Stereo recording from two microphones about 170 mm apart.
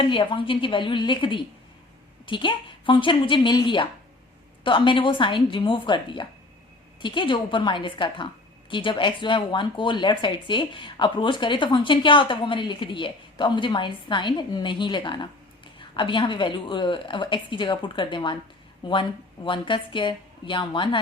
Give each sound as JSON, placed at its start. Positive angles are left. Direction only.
{"t": 0.0, "sound": "a woman's voice", "side_deg": 30}